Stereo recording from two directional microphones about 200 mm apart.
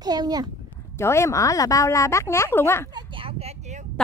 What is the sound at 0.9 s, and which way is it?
A woman's voice, 15° left (ahead or behind).